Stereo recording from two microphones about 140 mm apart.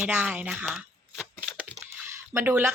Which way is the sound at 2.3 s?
15° right (ahead or behind).